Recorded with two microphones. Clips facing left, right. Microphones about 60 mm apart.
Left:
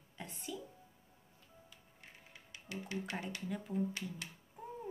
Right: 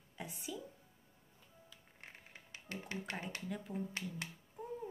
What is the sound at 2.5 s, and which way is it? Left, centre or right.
Speech, right.